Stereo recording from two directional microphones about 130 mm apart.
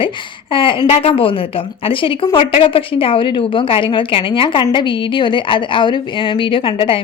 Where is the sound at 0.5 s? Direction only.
40° left (ahead or behind).